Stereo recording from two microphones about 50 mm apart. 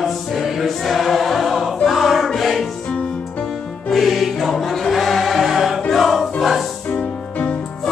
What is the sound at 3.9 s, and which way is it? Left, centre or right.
Music, centre.